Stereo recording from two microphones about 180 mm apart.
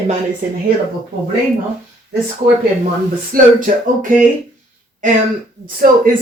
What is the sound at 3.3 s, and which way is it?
Speech, 50° right (ahead or behind).